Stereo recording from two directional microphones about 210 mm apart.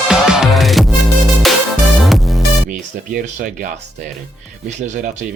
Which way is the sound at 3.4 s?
40° right (ahead or behind).